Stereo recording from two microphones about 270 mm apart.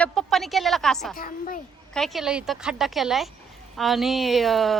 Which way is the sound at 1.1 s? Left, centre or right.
Left.